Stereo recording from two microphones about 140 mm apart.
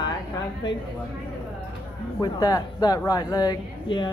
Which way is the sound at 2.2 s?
25° left (ahead or behind).